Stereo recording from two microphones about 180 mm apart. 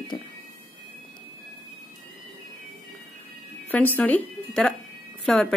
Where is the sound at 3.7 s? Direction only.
10° left (ahead or behind).